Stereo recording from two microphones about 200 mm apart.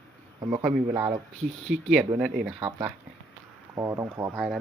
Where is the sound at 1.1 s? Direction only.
30° right (ahead or behind).